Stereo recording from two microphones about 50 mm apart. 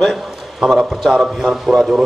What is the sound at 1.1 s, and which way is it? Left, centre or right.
Speech, centre.